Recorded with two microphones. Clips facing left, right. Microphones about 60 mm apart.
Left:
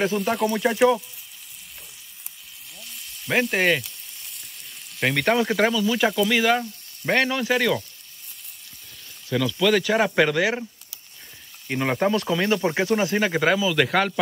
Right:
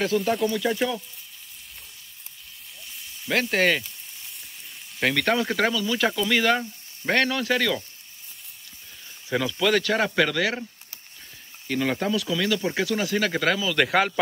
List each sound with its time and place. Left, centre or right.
0.0 s speech: centre
2.8 s sizzle: centre
4.9 s speech: centre
9.3 s speech: centre
9.6 s speech: centre
9.8 s a man's voice: centre; by 13.3 s left
13.3 s a man's voice: centre
13.7 s speech: centre